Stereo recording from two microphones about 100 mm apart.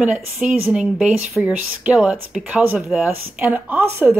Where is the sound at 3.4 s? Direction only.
20° right (ahead or behind).